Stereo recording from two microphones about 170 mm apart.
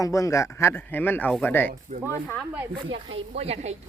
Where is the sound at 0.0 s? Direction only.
20° left (ahead or behind).